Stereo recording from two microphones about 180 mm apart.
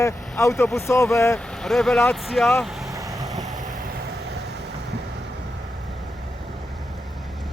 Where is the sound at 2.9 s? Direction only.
20° right (ahead or behind).